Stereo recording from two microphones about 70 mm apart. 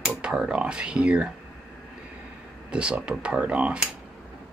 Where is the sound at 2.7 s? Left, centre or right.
Centre.